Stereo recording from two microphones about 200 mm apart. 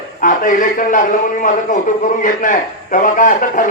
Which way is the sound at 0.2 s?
40° left (ahead or behind).